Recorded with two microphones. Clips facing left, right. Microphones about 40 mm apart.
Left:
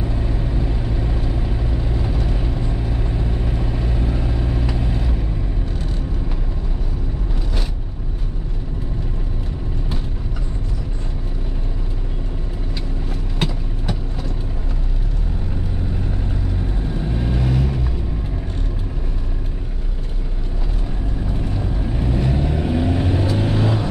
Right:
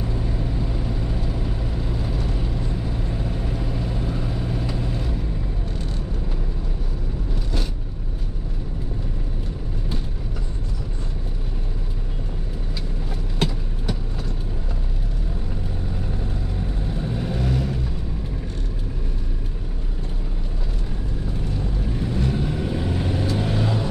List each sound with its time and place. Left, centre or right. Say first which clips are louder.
0.2 s vehicle: left 2 dB; centre
17.0 s vehicle: left 2 dB; centre
21.4 s vehicle: left 2 dB; centre